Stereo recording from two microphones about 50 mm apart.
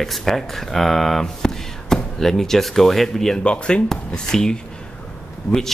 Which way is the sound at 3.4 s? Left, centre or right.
Left.